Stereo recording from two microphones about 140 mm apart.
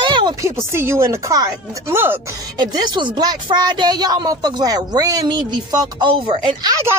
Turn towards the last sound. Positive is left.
turn(degrees=-25)  # may be behind; listen again after turning